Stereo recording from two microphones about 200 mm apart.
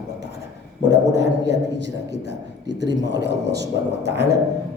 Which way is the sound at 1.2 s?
60° right (ahead or behind).